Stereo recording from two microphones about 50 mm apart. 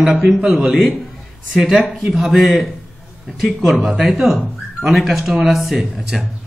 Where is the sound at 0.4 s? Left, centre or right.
Centre.